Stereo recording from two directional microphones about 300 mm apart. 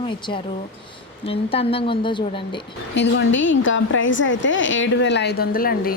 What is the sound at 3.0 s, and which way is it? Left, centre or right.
A woman's voice, left.